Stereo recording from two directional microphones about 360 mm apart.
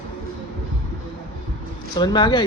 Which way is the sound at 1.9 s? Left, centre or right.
Centre.